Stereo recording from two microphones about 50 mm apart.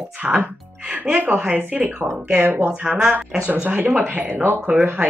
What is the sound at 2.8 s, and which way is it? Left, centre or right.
Speech, centre.